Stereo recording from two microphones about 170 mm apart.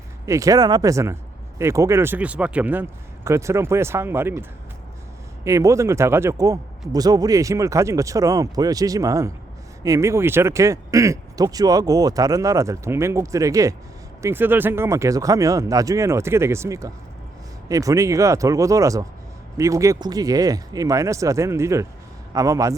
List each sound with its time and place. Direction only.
0.3 s speech: 20° right (ahead or behind)
5.5 s speech: 15° right (ahead or behind)